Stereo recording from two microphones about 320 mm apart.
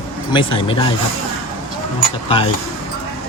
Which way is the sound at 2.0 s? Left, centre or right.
Centre.